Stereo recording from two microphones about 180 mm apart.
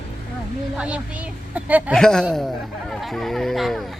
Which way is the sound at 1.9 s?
5° left (ahead or behind).